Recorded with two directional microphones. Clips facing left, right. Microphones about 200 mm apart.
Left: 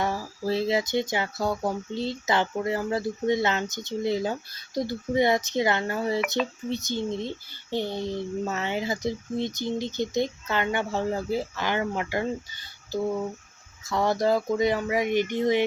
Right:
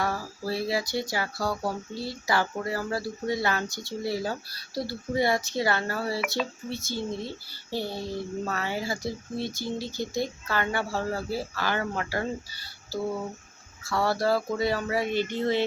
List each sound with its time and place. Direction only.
0.0 s speech: 20° left (ahead or behind)